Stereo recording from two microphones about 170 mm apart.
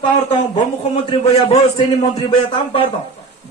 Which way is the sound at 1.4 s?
35° left (ahead or behind).